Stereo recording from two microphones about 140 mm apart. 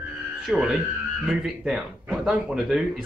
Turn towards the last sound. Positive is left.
turn(degrees=-5)  # may be behind; listen again after turning